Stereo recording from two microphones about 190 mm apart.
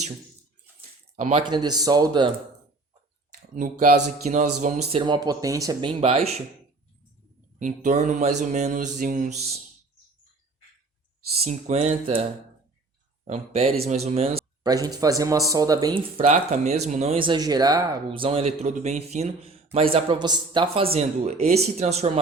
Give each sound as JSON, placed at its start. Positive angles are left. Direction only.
{"t": 1.1, "sound": "speech", "side_deg": -35}
{"t": 1.5, "sound": "speech", "side_deg": -20}
{"t": 3.5, "sound": "speech", "side_deg": -45}
{"t": 4.9, "sound": "speech", "side_deg": -25}
{"t": 7.6, "sound": "speech", "side_deg": -40}
{"t": 11.4, "sound": "speech", "side_deg": -35}
{"t": 13.2, "sound": "speech", "side_deg": -35}
{"t": 14.6, "sound": "speech", "side_deg": -20}
{"t": 16.2, "sound": "speech", "side_deg": -35}